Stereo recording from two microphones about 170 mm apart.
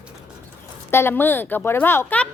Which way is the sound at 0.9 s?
15° left (ahead or behind).